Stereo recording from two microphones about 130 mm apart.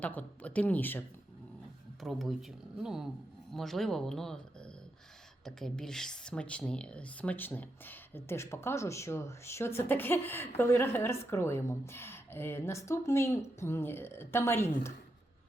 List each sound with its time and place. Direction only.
0.0 s speech: 10° left (ahead or behind)
2.0 s speech: centre (ahead or behind); by 14.7 s 20° left (ahead or behind)